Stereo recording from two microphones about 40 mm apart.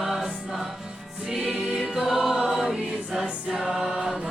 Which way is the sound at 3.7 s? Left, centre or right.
Centre.